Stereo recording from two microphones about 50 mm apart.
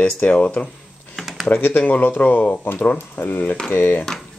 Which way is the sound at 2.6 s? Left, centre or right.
Left.